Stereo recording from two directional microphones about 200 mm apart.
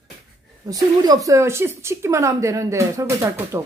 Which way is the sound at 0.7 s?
20° right (ahead or behind).